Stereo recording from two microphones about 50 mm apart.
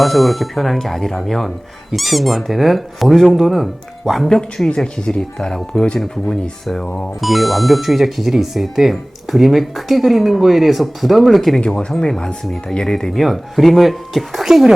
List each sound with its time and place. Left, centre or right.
0.0 s speech: centre
4.4 s speech: centre
11.6 s speech: centre
13.2 s speech: centre